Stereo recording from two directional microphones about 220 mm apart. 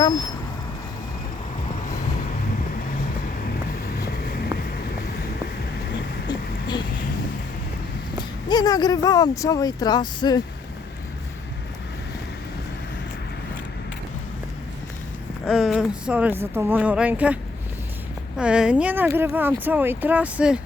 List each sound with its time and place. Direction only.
4.0 s vehicle: 45° left (ahead or behind)
8.4 s speech: 20° left (ahead or behind)
15.4 s speech: centre (ahead or behind)
18.3 s speech: 5° right (ahead or behind)